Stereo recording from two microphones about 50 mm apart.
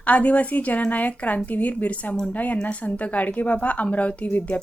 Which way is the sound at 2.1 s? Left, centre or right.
Centre.